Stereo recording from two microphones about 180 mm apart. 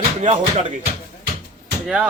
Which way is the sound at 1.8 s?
5° right (ahead or behind).